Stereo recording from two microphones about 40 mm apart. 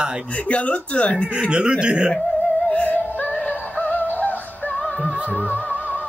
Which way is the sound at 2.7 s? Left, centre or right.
Left.